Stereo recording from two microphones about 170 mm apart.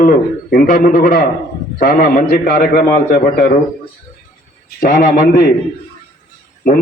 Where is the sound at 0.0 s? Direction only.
50° left (ahead or behind).